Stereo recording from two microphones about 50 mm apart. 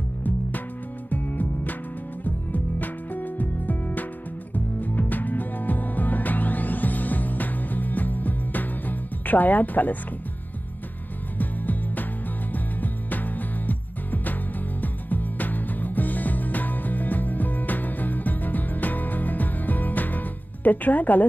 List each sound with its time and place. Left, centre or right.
1.1 s music: left
11.3 s music: left